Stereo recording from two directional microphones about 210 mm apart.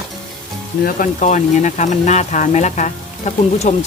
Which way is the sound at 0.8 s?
40° left (ahead or behind).